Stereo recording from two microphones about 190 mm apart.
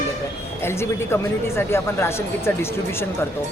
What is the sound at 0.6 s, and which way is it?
Speech, 15° left (ahead or behind).